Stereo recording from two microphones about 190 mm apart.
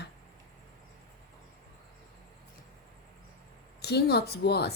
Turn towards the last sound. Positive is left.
turn(degrees=60)  # may be behind; listen again after turning